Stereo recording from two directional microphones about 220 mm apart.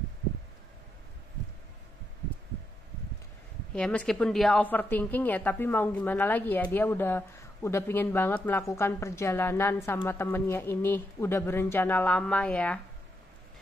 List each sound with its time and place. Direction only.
3.7 s a woman's voice: 5° left (ahead or behind)